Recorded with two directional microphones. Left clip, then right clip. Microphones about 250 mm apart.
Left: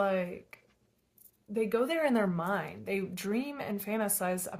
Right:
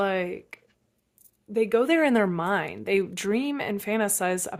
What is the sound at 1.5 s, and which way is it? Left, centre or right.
Speech, right.